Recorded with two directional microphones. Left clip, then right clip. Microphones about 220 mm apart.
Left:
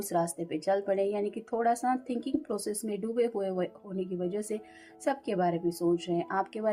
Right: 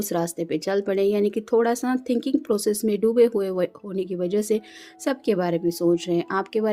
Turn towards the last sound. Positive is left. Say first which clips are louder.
# right 7 dB
turn(degrees=-45)  # may be behind; listen again after turning